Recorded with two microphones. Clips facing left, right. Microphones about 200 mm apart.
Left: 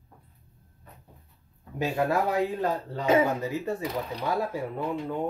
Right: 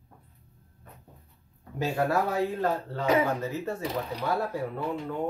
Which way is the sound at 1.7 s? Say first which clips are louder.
Left 1 dB; 15° left (ahead or behind).